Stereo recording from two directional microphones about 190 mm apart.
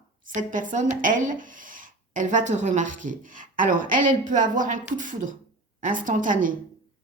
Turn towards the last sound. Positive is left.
turn(degrees=-45)  # may be behind; listen again after turning